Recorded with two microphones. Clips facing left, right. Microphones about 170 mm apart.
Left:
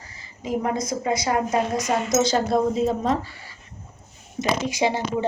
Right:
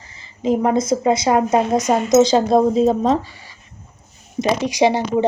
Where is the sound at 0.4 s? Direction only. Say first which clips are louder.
Right 8 dB; 25° right (ahead or behind).